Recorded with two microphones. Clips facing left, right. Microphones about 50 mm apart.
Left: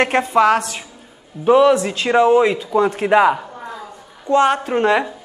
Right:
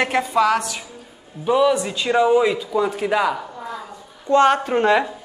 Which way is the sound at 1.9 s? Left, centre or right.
Centre.